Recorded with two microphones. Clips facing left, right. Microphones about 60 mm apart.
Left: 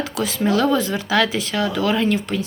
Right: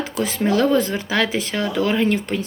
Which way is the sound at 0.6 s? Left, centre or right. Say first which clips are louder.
Right 2 dB; right.